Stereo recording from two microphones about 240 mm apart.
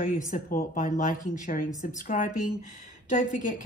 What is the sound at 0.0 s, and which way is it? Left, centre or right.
Speech, left.